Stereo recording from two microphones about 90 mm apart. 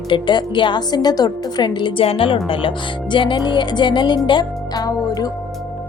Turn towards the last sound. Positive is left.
turn(degrees=55)  # may be behind; listen again after turning